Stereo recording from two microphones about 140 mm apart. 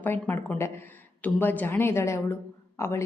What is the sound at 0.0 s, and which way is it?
A woman's voice, 15° left (ahead or behind).